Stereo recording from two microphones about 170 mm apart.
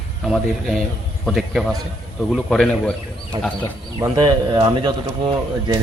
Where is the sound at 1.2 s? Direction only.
Centre (ahead or behind).